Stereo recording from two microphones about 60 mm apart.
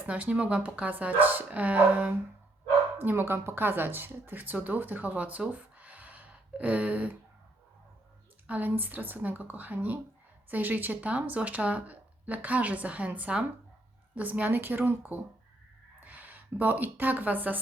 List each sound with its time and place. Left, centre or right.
0.1 s speech: right
3.0 s speech: right
8.4 s speech: right